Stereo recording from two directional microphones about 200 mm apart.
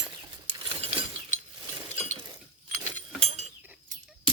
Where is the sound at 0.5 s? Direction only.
25° right (ahead or behind).